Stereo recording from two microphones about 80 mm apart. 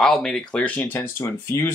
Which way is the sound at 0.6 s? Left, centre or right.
Centre.